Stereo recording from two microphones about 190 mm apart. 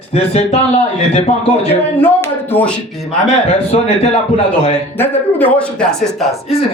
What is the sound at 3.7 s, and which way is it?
Speech, 35° left (ahead or behind).